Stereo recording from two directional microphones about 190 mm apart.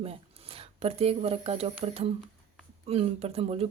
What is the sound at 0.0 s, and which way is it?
Speech, 30° right (ahead or behind).